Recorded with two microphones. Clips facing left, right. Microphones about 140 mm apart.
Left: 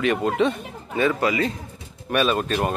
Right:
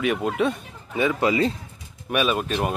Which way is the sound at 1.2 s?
30° right (ahead or behind).